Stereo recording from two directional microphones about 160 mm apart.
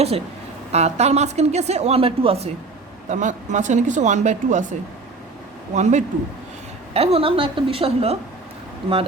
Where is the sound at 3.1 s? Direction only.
50° right (ahead or behind).